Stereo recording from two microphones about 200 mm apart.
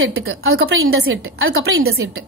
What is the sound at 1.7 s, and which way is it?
Speech, 90° right.